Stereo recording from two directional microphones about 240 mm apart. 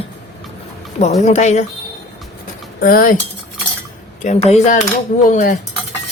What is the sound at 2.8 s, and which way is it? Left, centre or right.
Cutlery, left.